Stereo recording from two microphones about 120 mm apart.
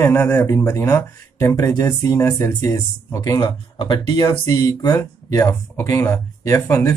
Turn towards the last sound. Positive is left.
turn(degrees=25)  # may be behind; listen again after turning